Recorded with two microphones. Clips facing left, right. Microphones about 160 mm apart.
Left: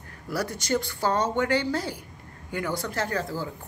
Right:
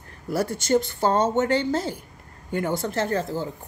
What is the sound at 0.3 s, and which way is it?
Speech, 25° right (ahead or behind).